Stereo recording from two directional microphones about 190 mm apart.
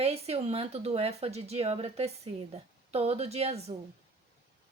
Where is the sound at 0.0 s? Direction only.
30° right (ahead or behind).